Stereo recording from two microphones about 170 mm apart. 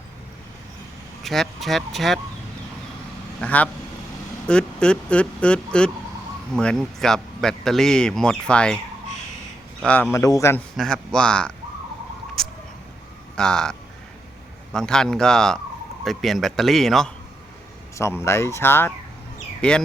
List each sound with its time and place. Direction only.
1.2 s a man's voice: centre (ahead or behind)
3.4 s a man's voice: 10° left (ahead or behind)
9.8 s speech: 10° left (ahead or behind)
10.8 s a man's voice: 5° left (ahead or behind)
12.4 s a sound: centre (ahead or behind)
13.3 s a man's voice: 5° left (ahead or behind)
17.9 s speech: 15° left (ahead or behind)